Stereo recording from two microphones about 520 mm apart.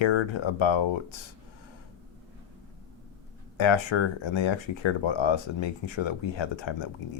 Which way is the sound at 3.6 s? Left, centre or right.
Left.